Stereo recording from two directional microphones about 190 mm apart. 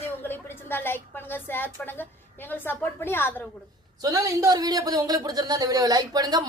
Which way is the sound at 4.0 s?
20° right (ahead or behind).